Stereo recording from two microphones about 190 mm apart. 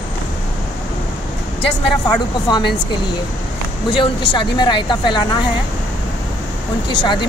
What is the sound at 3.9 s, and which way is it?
Speech, 25° left (ahead or behind).